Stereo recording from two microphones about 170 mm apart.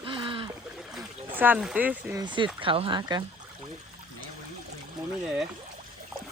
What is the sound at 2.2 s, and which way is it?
Speech, 25° right (ahead or behind).